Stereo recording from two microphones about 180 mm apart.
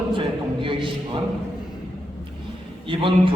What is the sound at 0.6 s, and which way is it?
Speech, 30° right (ahead or behind).